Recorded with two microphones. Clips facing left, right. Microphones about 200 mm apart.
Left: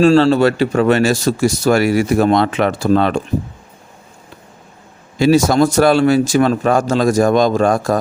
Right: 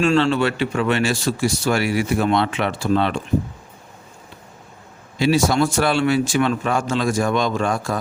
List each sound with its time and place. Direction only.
0.0 s speech: 35° left (ahead or behind)
5.1 s speech: 45° left (ahead or behind)